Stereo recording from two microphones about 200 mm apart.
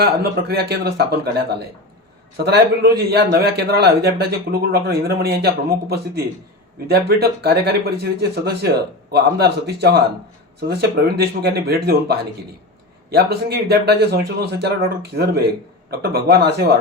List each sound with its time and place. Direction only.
0.0 s a man's voice: 55° right (ahead or behind)
2.4 s a man's voice: 55° right (ahead or behind)